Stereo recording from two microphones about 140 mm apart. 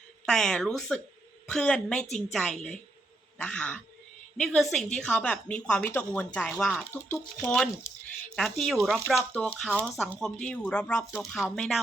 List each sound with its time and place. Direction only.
0.3 s a woman's voice: 5° left (ahead or behind)
7.9 s a sound: 20° left (ahead or behind)
8.4 s a woman's voice: centre (ahead or behind)
8.8 s speech: 15° right (ahead or behind)
9.3 s a woman's voice: 10° left (ahead or behind)